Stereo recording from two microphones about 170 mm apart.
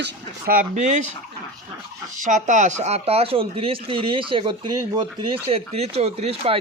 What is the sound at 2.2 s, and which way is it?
Speech, 50° right (ahead or behind).